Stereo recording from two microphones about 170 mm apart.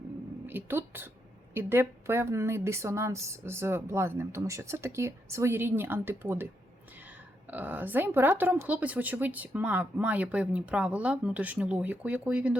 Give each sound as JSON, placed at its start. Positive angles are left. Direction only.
{"t": 0.4, "sound": "a woman's voice", "side_deg": -10}